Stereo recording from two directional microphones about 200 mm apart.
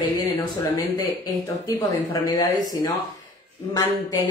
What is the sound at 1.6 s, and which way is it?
Speech, 15° left (ahead or behind).